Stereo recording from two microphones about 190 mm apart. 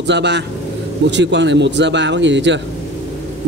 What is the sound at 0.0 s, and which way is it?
A man's voice, 65° right (ahead or behind).